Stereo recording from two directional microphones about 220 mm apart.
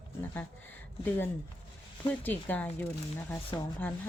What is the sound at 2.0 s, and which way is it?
Speech, 10° left (ahead or behind).